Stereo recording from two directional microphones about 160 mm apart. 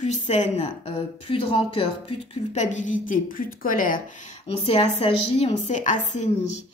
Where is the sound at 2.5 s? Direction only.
50° left (ahead or behind).